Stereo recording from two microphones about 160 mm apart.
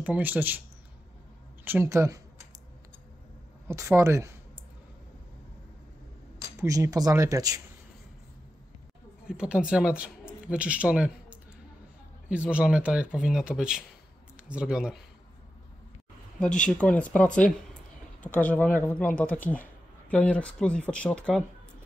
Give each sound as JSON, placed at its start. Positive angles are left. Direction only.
{"t": 0.0, "sound": "a woman's voice", "side_deg": -10}
{"t": 1.6, "sound": "a woman's voice", "side_deg": -15}
{"t": 3.6, "sound": "a woman's voice", "side_deg": -20}
{"t": 6.4, "sound": "speech", "side_deg": -20}
{"t": 9.3, "sound": "speech", "side_deg": -5}
{"t": 16.3, "sound": "speech", "side_deg": 5}